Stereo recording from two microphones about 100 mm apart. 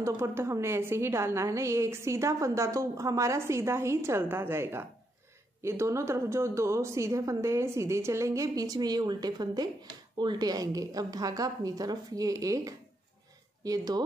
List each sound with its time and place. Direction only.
0.0 s a woman's voice: 30° right (ahead or behind)